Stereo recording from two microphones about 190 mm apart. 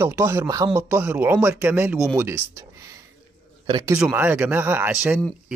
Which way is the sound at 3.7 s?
20° right (ahead or behind).